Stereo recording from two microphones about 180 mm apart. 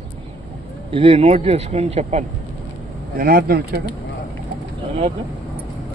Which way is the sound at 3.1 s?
55° right (ahead or behind).